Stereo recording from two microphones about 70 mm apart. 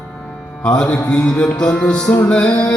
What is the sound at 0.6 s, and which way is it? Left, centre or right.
Music, centre.